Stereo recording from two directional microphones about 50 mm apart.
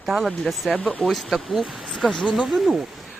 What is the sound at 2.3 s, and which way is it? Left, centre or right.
Speech, centre.